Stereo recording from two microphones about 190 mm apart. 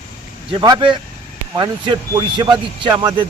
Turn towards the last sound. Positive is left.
turn(degrees=-25)  # may be behind; listen again after turning